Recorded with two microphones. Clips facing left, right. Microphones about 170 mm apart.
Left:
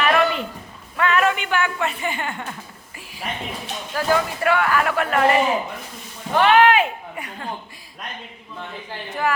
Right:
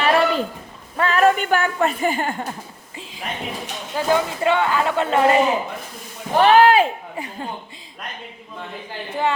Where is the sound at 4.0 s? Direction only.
20° right (ahead or behind).